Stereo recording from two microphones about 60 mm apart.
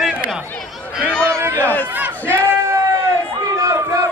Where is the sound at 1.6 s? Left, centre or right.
Left.